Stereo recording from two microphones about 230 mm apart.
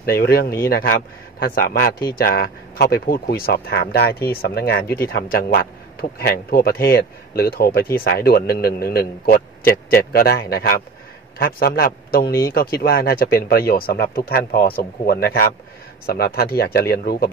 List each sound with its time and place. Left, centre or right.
0.0 s speech: left